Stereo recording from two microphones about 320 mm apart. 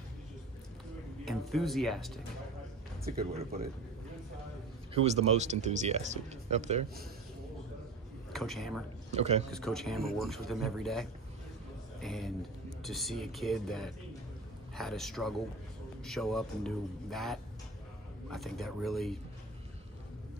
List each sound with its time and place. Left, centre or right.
1.2 s speech: centre
3.1 s speech: right
4.9 s speech: right
8.3 s speech: centre
9.1 s speech: right
9.5 s speech: centre